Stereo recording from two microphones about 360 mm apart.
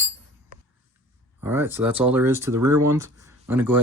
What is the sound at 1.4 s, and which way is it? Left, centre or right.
Speech, centre.